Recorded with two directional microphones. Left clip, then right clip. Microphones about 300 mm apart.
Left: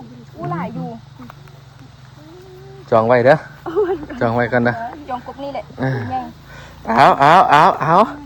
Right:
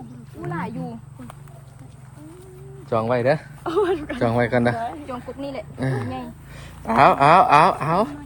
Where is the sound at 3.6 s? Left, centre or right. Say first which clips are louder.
Left 2 dB; centre.